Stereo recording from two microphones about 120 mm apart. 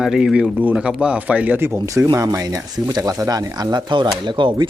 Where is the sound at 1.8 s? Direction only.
30° right (ahead or behind).